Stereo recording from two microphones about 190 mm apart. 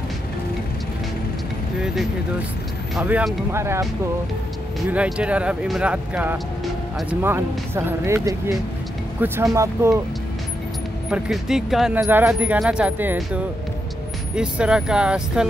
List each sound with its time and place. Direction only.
3.0 s speech: 5° right (ahead or behind)
4.8 s speech: 5° right (ahead or behind)
11.1 s speech: 5° right (ahead or behind)